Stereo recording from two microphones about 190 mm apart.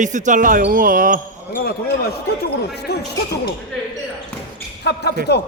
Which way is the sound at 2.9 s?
55° left (ahead or behind).